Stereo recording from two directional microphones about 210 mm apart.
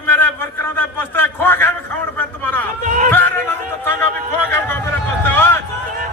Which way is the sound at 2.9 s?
35° right (ahead or behind).